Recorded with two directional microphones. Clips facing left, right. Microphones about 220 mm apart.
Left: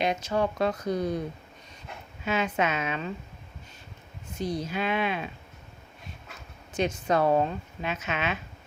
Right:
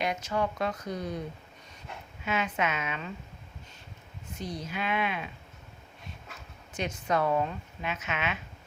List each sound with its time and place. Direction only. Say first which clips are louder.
0.0 s speech: left 4 dB; 30° left (ahead or behind)
2.2 s speech: left 3 dB; 35° left (ahead or behind)
4.4 s speech: left 6 dB; 35° left (ahead or behind)
6.7 s speech: left 4 dB; 30° left (ahead or behind)